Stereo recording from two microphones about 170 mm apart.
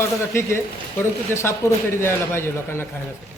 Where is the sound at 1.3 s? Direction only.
15° left (ahead or behind).